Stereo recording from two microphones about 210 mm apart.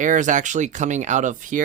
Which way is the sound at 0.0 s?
35° right (ahead or behind).